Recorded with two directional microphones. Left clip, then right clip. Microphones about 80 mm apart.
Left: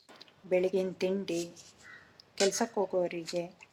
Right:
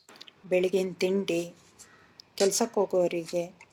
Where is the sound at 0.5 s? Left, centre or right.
Right.